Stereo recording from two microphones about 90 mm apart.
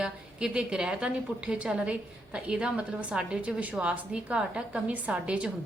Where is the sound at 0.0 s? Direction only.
10° right (ahead or behind).